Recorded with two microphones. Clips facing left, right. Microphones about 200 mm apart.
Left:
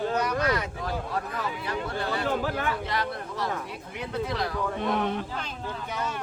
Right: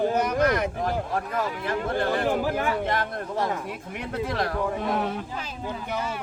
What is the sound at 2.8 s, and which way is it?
Speech, 50° right (ahead or behind).